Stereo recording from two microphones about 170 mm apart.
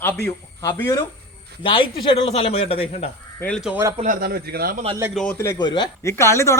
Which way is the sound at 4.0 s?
55° right (ahead or behind).